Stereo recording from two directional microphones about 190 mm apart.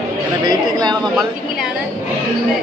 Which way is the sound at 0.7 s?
20° right (ahead or behind).